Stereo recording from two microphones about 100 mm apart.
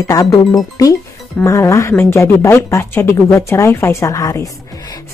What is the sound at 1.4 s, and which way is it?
Speech, 30° left (ahead or behind).